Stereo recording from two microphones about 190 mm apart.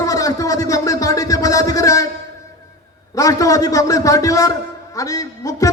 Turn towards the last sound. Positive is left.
turn(degrees=15)  # may be behind; listen again after turning